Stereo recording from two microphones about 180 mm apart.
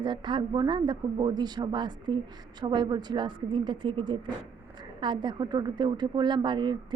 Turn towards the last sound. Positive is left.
turn(degrees=-25)  # may be behind; listen again after turning